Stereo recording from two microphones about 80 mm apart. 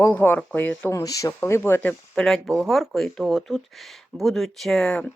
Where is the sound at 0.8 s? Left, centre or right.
Left.